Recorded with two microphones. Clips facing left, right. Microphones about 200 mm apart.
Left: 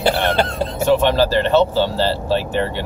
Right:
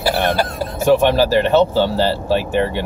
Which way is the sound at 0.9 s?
10° right (ahead or behind).